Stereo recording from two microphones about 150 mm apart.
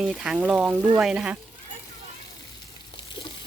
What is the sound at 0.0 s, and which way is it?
Speech, 5° right (ahead or behind).